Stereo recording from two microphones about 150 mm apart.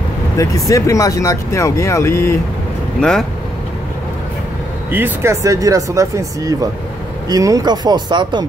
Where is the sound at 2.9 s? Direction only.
5° left (ahead or behind).